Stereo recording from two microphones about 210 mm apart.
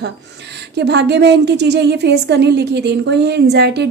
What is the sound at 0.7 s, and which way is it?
A woman's voice, 55° right (ahead or behind).